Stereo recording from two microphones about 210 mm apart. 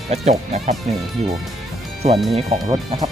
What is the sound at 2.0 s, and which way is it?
Speech, 30° right (ahead or behind).